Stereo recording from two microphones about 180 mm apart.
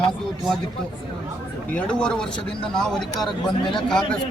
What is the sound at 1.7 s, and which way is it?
A man's voice, 5° left (ahead or behind).